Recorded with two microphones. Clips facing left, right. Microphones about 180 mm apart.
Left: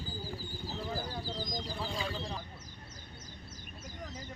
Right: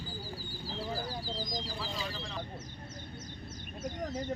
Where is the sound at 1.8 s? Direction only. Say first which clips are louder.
Left 2 dB; 20° left (ahead or behind).